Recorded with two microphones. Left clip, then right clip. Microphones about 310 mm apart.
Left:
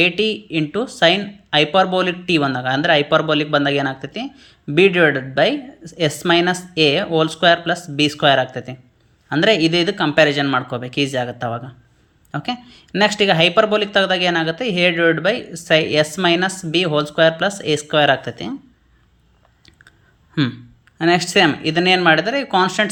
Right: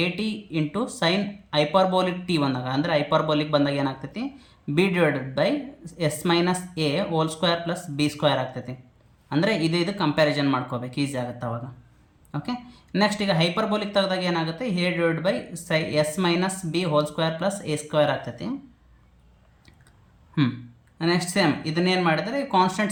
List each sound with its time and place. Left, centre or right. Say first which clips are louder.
0.0 s speech: left 11 dB; centre
21.0 s speech: left 9 dB; centre